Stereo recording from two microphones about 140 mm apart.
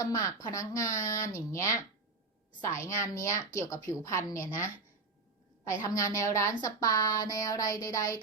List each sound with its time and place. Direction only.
0.0 s a woman's voice: 25° left (ahead or behind)